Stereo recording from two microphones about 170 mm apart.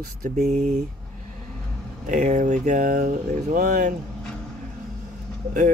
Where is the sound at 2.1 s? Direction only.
45° right (ahead or behind).